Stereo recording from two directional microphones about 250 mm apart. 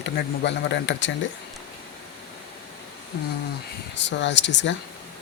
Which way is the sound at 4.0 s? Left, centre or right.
Left.